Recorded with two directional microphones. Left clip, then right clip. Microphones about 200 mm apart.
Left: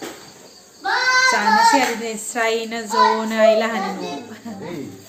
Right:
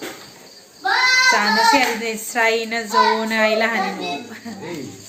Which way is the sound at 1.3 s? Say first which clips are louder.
Left 1 dB; centre (ahead or behind).